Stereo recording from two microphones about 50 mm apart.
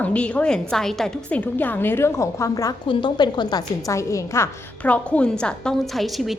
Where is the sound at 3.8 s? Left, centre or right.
Left.